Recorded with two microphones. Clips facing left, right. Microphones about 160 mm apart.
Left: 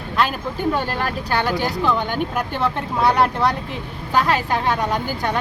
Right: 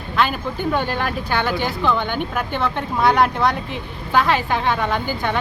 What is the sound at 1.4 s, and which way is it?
Speech, 40° left (ahead or behind).